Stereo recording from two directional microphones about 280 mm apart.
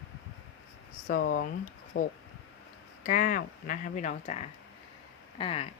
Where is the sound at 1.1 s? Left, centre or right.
Left.